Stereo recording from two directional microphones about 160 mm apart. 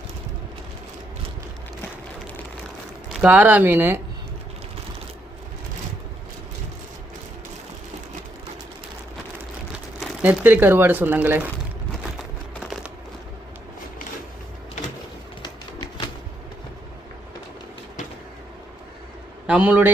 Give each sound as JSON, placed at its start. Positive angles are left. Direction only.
{"t": 3.1, "sound": "speech", "side_deg": -10}
{"t": 10.0, "sound": "speech", "side_deg": -10}
{"t": 15.4, "sound": "a sound", "side_deg": 25}
{"t": 19.5, "sound": "a man's voice", "side_deg": -10}